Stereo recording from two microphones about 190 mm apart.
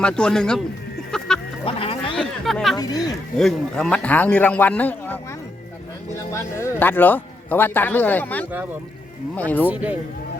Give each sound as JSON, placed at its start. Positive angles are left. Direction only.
{"t": 0.0, "sound": "speech", "side_deg": 5}
{"t": 1.1, "sound": "duck", "side_deg": 5}
{"t": 1.6, "sound": "a sound", "side_deg": 30}
{"t": 2.1, "sound": "a sound", "side_deg": 0}
{"t": 2.7, "sound": "speech", "side_deg": 20}
{"t": 3.3, "sound": "a man's voice", "side_deg": 5}
{"t": 6.3, "sound": "a man's voice", "side_deg": 15}
{"t": 9.6, "sound": "speech", "side_deg": -10}